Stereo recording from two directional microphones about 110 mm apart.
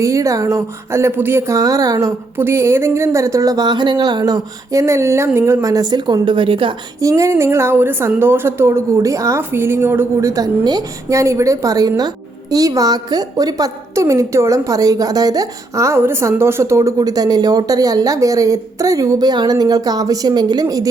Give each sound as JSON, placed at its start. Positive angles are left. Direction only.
{"t": 0.0, "sound": "speech", "side_deg": -30}
{"t": 5.6, "sound": "speech", "side_deg": -35}
{"t": 7.0, "sound": "a woman's voice", "side_deg": -25}